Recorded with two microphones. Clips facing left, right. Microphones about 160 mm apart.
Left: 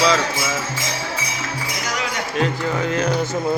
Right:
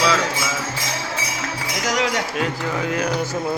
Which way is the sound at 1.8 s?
85° right.